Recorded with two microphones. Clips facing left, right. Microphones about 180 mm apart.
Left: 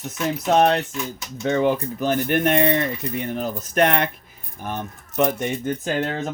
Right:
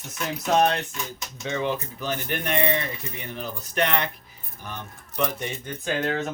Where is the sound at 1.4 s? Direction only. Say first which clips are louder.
Left 8 dB; 50° left (ahead or behind).